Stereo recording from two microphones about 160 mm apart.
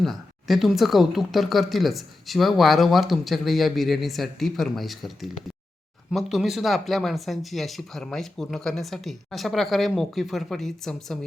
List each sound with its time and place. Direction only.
0.0 s speech: centre (ahead or behind)